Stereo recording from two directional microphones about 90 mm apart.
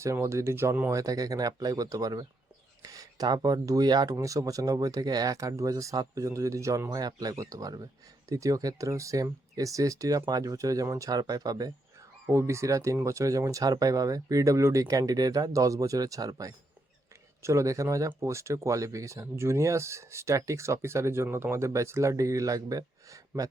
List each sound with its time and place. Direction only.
0.0 s speech: 30° right (ahead or behind)
6.9 s speech: 45° right (ahead or behind)
12.3 s speech: 30° right (ahead or behind)